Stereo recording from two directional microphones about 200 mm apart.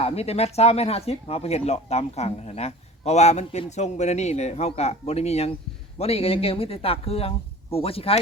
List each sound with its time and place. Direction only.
0.0 s speech: 30° left (ahead or behind)